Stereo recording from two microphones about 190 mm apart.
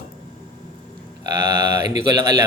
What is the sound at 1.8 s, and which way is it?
Speech, 20° right (ahead or behind).